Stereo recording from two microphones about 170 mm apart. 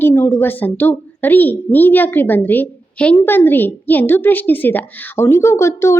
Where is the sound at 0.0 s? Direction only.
15° left (ahead or behind).